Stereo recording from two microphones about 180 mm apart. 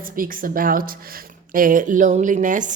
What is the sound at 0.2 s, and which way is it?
A woman's voice, 50° right (ahead or behind).